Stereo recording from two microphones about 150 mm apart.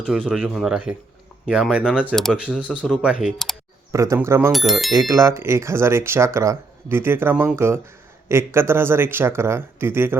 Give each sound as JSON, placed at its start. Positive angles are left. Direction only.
{"t": 0.0, "sound": "speech", "side_deg": 0}
{"t": 3.0, "sound": "speech", "side_deg": -5}
{"t": 3.9, "sound": "speech", "side_deg": -20}
{"t": 4.5, "sound": "speech", "side_deg": 0}
{"t": 4.9, "sound": "speech", "side_deg": -20}